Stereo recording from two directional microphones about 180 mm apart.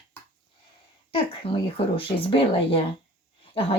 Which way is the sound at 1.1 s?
30° left (ahead or behind).